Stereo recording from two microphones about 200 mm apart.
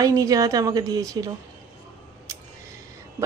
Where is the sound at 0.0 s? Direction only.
15° right (ahead or behind).